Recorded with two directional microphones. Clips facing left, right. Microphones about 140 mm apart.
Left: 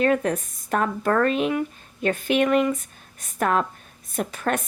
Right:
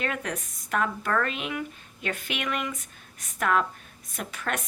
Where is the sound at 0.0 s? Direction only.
35° left (ahead or behind).